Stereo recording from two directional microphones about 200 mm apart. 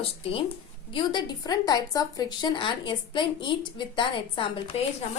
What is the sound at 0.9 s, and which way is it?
A woman's voice, 20° left (ahead or behind).